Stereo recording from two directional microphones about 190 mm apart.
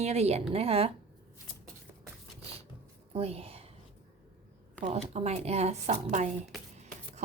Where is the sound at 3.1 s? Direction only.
30° right (ahead or behind).